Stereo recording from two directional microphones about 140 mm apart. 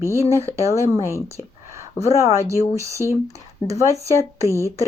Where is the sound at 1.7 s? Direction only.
20° right (ahead or behind).